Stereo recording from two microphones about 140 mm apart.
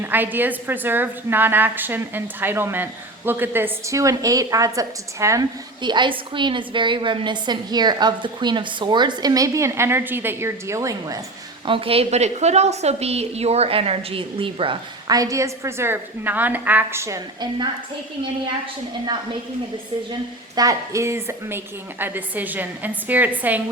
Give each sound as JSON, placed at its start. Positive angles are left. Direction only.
{"t": 0.0, "sound": "a woman's voice", "side_deg": -15}
{"t": 5.8, "sound": "a woman's voice", "side_deg": -35}
{"t": 11.6, "sound": "a woman's voice", "side_deg": -40}
{"t": 15.1, "sound": "a woman's voice", "side_deg": -25}
{"t": 20.6, "sound": "a woman's voice", "side_deg": -25}